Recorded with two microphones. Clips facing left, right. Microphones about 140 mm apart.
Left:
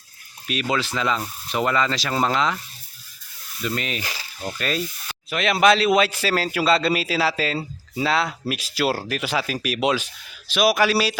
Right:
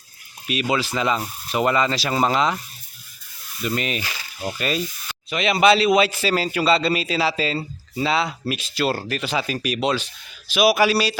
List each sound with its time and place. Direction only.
0.4 s speech: 5° right (ahead or behind)
3.6 s a man's voice: 15° right (ahead or behind); by 10.1 s 10° left (ahead or behind)
10.5 s a man's voice: 5° right (ahead or behind)